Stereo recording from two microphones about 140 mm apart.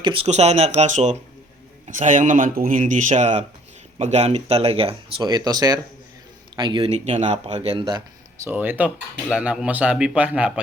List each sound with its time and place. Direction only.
0.0 s speech: 40° right (ahead or behind)
0.3 s speech: 55° right (ahead or behind); by 6.9 s 35° right (ahead or behind)
6.9 s speech: 55° right (ahead or behind)
7.7 s speech: 30° right (ahead or behind)
8.4 s a man's voice: 15° right (ahead or behind)